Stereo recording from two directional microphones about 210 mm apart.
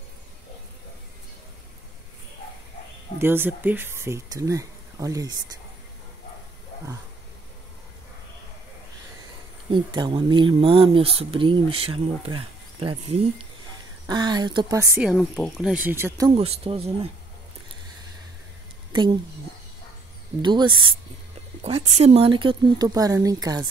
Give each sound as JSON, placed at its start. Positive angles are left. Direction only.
{"t": 3.2, "sound": "speech", "side_deg": -10}
{"t": 9.7, "sound": "speech", "side_deg": -20}
{"t": 15.0, "sound": "speech", "side_deg": 0}
{"t": 16.3, "sound": "speech", "side_deg": -30}
{"t": 20.4, "sound": "speech", "side_deg": -20}